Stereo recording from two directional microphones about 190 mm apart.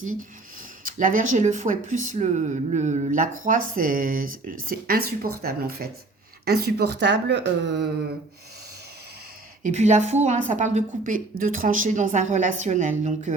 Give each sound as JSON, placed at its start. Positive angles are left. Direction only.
{"t": 0.0, "sound": "speech", "side_deg": -45}
{"t": 9.6, "sound": "a woman's voice", "side_deg": -35}